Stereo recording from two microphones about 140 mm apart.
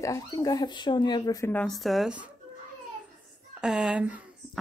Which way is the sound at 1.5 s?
5° left (ahead or behind).